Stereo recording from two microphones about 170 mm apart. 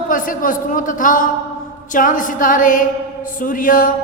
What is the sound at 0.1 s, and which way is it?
Speech, 50° left (ahead or behind).